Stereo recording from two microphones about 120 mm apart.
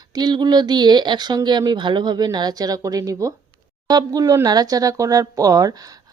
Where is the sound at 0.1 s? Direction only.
35° right (ahead or behind).